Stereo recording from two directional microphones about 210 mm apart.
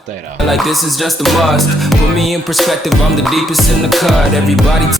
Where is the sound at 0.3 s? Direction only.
Centre (ahead or behind).